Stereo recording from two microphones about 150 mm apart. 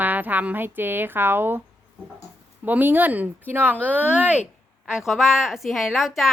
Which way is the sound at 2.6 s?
10° right (ahead or behind).